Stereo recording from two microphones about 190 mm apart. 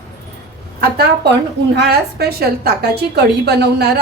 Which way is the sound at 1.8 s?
55° right (ahead or behind).